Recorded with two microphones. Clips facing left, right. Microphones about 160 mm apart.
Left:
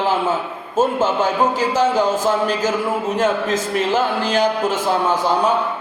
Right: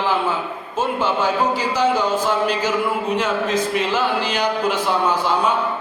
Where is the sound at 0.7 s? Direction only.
45° left (ahead or behind).